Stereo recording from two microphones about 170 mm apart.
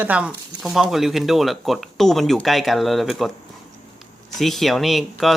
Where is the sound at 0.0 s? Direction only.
10° right (ahead or behind).